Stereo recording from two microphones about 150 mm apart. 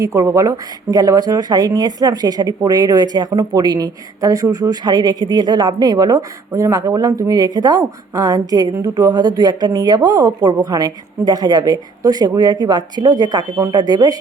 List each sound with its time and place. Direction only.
0.0 s speech: 20° right (ahead or behind)